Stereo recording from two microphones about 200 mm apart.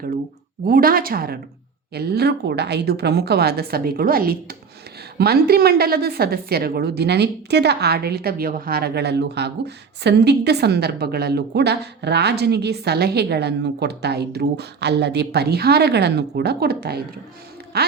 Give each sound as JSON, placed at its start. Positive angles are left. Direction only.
{"t": 0.7, "sound": "a woman's voice", "side_deg": -45}